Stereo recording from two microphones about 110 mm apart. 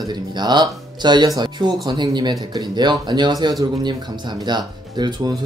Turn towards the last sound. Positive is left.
turn(degrees=-40)  # may be behind; listen again after turning